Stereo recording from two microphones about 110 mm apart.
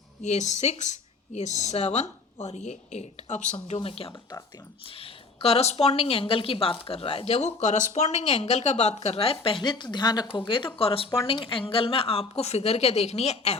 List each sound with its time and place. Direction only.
0.2 s speech: 90° left
3.8 s speech: 60° left (ahead or behind)
10.8 s speech: 60° left (ahead or behind)
12.4 s speech: 75° left (ahead or behind)